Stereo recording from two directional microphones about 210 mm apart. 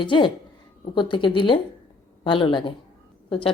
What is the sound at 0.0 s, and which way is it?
Speech, 25° left (ahead or behind).